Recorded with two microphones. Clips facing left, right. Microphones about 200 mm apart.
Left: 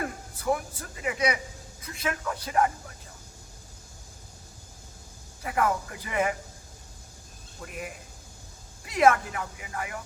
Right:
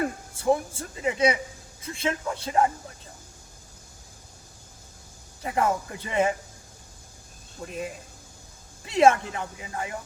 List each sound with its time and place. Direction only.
0.3 s speech: 25° right (ahead or behind)
5.4 s speech: 25° right (ahead or behind)
7.6 s speech: 25° right (ahead or behind)